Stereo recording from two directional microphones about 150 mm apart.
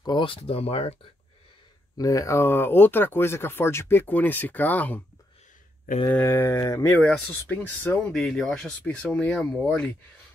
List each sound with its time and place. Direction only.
0.0 s speech: 30° left (ahead or behind)
2.0 s speech: 20° left (ahead or behind)
6.0 s speech: 15° left (ahead or behind)
7.0 s speech: 10° left (ahead or behind)
8.1 s speech: centre (ahead or behind)